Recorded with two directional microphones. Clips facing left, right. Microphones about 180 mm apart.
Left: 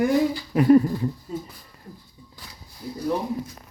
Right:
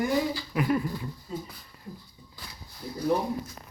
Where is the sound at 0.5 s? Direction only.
35° left (ahead or behind).